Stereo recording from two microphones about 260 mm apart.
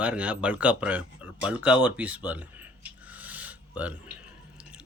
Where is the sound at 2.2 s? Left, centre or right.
Centre.